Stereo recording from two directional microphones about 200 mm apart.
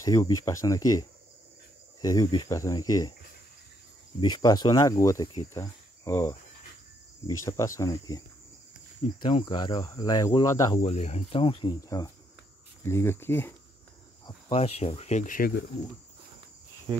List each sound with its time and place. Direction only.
0.0 s speech: 15° left (ahead or behind)
4.2 s speech: 20° left (ahead or behind)
7.3 s speech: 15° left (ahead or behind)
9.2 s speech: 20° left (ahead or behind)
10.8 s speech: 35° left (ahead or behind); by 13.6 s 10° left (ahead or behind)
14.2 s speech: 30° left (ahead or behind); by 15.6 s 45° left (ahead or behind)
16.9 s cricket: 20° right (ahead or behind)